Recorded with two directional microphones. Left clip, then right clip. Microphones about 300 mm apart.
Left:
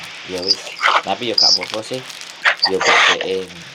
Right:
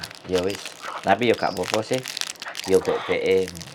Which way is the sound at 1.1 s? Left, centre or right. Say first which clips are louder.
Left 4 dB; centre.